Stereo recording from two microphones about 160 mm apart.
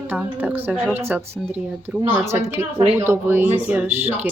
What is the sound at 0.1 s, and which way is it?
Speech, 10° right (ahead or behind).